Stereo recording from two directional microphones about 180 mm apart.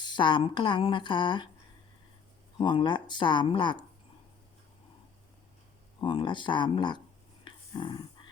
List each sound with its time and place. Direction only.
0.0 s speech: 25° left (ahead or behind)
2.6 s speech: 25° left (ahead or behind)
6.0 s speech: 25° left (ahead or behind)
7.4 s a sound: 25° left (ahead or behind)